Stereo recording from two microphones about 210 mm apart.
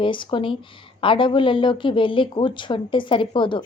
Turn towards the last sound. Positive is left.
turn(degrees=25)  # may be behind; listen again after turning